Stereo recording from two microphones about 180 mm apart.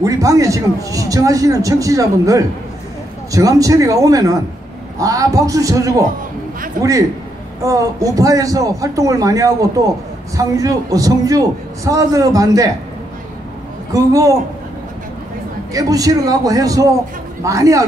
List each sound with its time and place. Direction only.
0.0 s speech: 20° right (ahead or behind)
13.9 s speech: 20° right (ahead or behind)
15.7 s speech: 20° right (ahead or behind)